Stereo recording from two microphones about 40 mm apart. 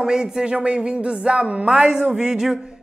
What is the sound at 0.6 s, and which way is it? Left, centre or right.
Speech, right.